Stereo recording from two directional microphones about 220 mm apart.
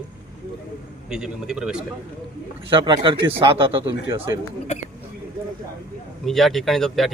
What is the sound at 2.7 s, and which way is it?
Speech, 20° right (ahead or behind).